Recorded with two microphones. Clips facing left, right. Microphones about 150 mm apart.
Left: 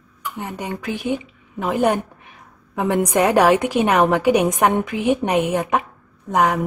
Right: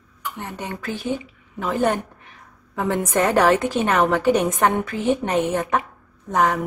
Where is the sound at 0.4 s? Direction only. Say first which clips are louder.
Left 4 dB; 10° left (ahead or behind).